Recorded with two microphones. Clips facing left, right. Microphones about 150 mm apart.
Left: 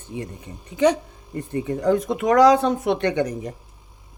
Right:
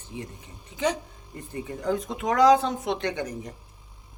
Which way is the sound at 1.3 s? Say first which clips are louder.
Left 9 dB; 65° left (ahead or behind).